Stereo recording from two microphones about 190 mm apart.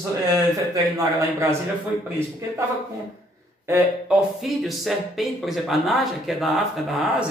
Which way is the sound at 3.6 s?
10° right (ahead or behind).